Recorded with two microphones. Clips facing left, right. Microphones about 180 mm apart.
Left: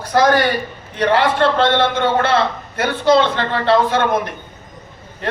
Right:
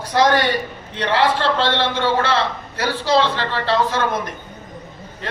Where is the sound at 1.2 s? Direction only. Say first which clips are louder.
Even; 55° left (ahead or behind).